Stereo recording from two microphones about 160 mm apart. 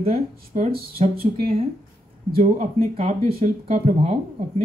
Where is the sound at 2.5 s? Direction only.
45° right (ahead or behind).